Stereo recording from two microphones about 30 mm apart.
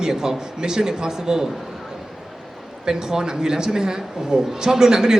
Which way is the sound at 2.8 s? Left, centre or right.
Right.